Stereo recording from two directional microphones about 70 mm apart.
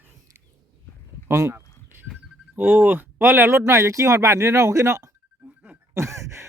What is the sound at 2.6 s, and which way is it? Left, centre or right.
Speech, right.